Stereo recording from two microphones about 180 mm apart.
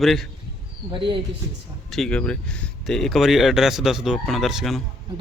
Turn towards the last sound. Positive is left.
turn(degrees=0)  # may be behind; listen again after turning